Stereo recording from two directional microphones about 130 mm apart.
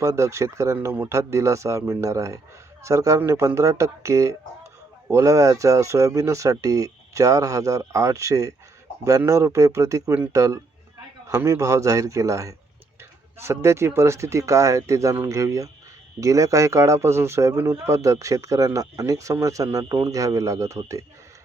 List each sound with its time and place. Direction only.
0.0 s speech: 25° right (ahead or behind)